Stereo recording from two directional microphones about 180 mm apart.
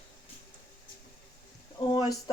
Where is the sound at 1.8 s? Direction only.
25° left (ahead or behind).